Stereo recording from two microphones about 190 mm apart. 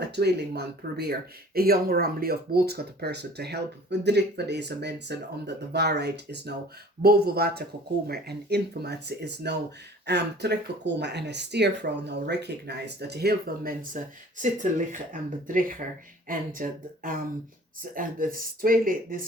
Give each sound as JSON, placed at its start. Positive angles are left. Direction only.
{"t": 0.0, "sound": "speech", "side_deg": -60}